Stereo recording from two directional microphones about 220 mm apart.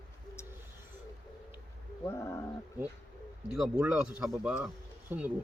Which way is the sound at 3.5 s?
5° right (ahead or behind).